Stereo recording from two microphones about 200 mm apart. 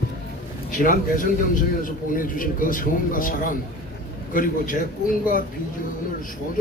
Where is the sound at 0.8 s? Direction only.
45° left (ahead or behind).